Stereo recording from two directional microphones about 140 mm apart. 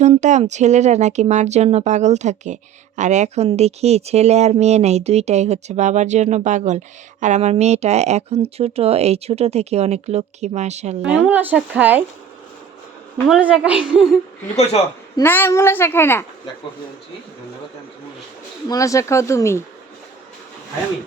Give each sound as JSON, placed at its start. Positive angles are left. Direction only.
{"t": 0.2, "sound": "speech", "side_deg": -55}
{"t": 11.3, "sound": "a woman's voice", "side_deg": -10}
{"t": 13.2, "sound": "a woman's voice", "side_deg": -5}
{"t": 14.5, "sound": "a man's voice", "side_deg": 50}
{"t": 15.2, "sound": "a woman's voice", "side_deg": 15}
{"t": 18.7, "sound": "speech", "side_deg": 25}